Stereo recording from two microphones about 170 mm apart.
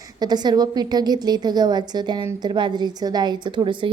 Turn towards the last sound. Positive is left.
turn(degrees=-30)  # may be behind; listen again after turning